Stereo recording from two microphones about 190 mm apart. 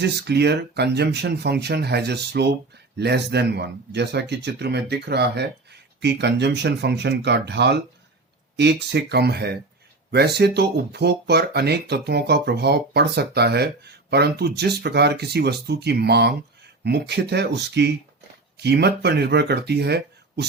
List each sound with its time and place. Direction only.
0.0 s speech: 60° right (ahead or behind)